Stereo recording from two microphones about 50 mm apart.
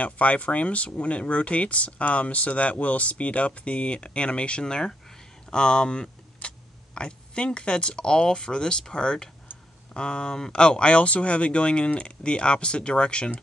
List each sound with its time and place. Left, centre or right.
0.0 s speech: left